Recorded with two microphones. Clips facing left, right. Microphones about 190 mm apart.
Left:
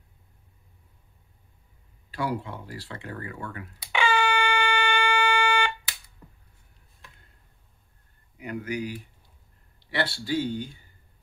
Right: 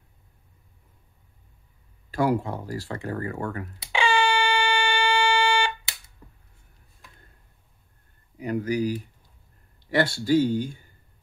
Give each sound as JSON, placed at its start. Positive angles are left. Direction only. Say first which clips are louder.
{"t": 2.0, "sound": "speech", "louder": "right 7 dB", "side_deg": -45}
{"t": 3.8, "sound": "a sound", "louder": "right 1 dB", "side_deg": -30}
{"t": 8.4, "sound": "speech", "louder": "right 6 dB", "side_deg": -35}